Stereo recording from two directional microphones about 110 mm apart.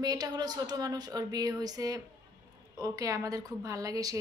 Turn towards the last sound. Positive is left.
turn(degrees=-30)  # may be behind; listen again after turning